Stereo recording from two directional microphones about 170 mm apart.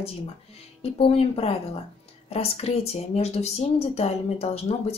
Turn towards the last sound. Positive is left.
turn(degrees=35)  # may be behind; listen again after turning